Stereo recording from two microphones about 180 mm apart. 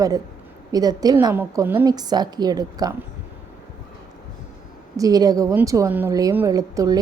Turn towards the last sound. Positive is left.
turn(degrees=-20)  # may be behind; listen again after turning